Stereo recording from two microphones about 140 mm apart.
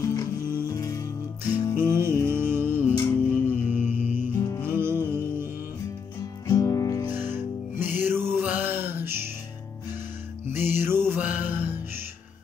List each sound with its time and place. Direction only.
0.0 s music: 25° left (ahead or behind)
1.8 s music: 15° right (ahead or behind)
4.4 s music: 20° left (ahead or behind)
4.6 s music: 15° right (ahead or behind)
6.4 s music: 25° left (ahead or behind)
7.1 s music: 15° right (ahead or behind)
10.4 s music: 15° right (ahead or behind)